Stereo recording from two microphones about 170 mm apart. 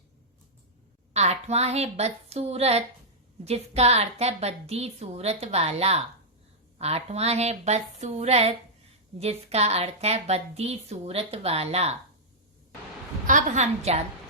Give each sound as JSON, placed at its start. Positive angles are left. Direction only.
{"t": 1.1, "sound": "a woman's voice", "side_deg": -40}
{"t": 13.2, "sound": "a woman's voice", "side_deg": -45}